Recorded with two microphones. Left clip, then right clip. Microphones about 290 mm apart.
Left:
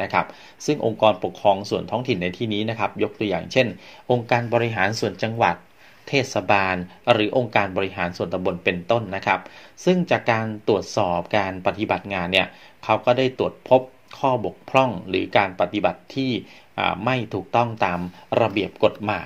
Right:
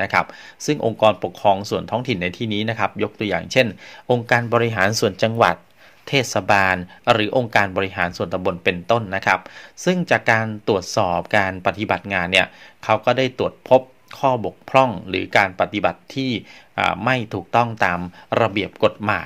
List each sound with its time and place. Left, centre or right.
0.0 s speech: right